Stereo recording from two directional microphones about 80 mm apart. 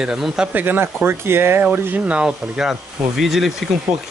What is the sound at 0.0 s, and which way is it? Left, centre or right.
Speech, centre.